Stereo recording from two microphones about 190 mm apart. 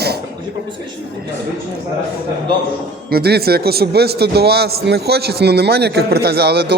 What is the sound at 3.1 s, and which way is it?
A man's voice, 55° right (ahead or behind).